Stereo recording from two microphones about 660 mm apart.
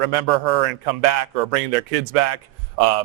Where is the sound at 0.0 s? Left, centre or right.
Right.